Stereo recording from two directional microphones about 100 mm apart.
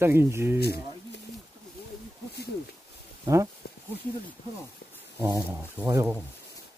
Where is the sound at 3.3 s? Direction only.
35° right (ahead or behind).